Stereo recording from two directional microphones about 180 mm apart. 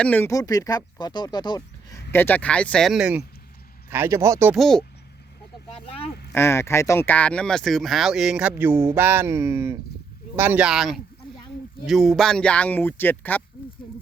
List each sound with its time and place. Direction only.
0.0 s speech: 10° left (ahead or behind)
2.1 s speech: 10° left (ahead or behind)
3.8 s speech: 15° right (ahead or behind)
4.5 s speech: centre (ahead or behind)
5.7 s speech: 35° left (ahead or behind)
6.3 s speech: 15° left (ahead or behind)